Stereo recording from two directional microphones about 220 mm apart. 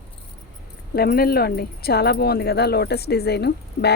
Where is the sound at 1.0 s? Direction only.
45° left (ahead or behind).